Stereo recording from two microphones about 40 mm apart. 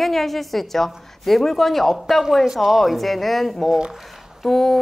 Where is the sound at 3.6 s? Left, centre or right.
Centre.